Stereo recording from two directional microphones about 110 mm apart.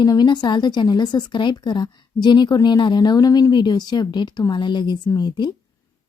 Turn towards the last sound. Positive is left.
turn(degrees=40)  # may be behind; listen again after turning